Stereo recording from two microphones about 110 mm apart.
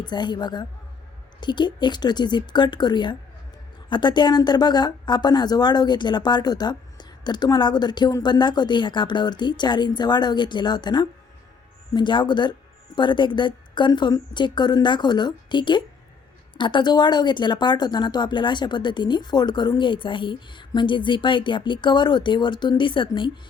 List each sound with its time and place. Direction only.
0.0 s speech: 40° left (ahead or behind)